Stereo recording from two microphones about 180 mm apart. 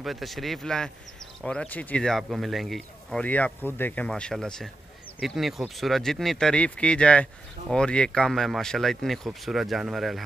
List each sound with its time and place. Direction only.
0.0 s speech: centre (ahead or behind)